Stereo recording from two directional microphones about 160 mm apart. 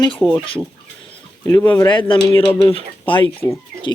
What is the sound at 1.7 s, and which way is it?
Speech, 30° left (ahead or behind).